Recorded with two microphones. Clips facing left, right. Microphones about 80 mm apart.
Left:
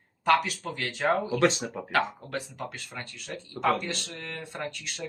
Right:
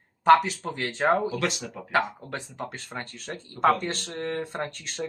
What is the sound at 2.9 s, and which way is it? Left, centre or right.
Speech, right.